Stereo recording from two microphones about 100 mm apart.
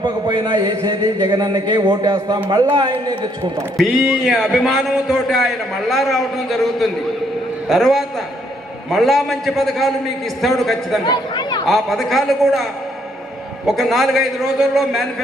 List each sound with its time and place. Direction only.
0.0 s a man's voice: 50° right (ahead or behind)
3.8 s a man's voice: centre (ahead or behind)
11.0 s speech: 45° left (ahead or behind)
11.6 s a man's voice: centre (ahead or behind)
13.7 s a man's voice: centre (ahead or behind)